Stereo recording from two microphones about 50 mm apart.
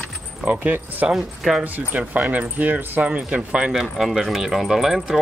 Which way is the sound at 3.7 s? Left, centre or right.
Centre.